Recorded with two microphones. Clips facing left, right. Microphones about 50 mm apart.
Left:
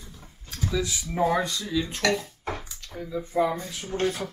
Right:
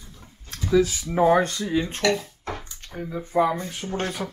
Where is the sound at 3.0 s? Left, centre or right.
Right.